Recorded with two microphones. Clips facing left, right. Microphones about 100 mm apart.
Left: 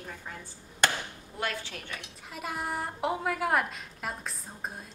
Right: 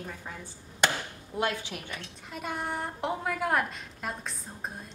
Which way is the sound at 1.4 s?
20° right (ahead or behind).